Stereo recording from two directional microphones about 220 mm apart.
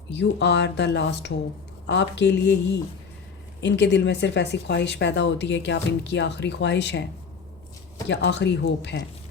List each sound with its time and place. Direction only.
0.1 s speech: 55° left (ahead or behind)
8.0 s speech: 50° left (ahead or behind)